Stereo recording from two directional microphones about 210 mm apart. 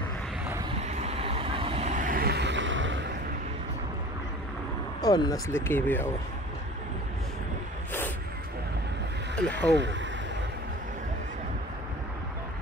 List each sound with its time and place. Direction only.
0.7 s vehicle: 30° right (ahead or behind); by 3.1 s 60° right (ahead or behind)
5.0 s speech: 20° left (ahead or behind)
9.3 s speech: 5° left (ahead or behind)
9.7 s speech: 55° right (ahead or behind)